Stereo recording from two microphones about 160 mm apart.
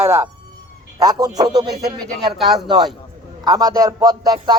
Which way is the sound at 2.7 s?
25° right (ahead or behind).